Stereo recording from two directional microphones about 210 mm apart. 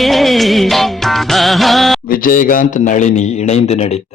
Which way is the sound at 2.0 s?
40° left (ahead or behind).